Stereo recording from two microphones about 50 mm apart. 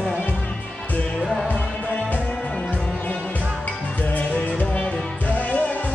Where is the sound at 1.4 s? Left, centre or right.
Left.